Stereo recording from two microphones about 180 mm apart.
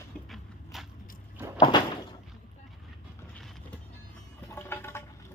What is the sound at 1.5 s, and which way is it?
Door, 25° left (ahead or behind).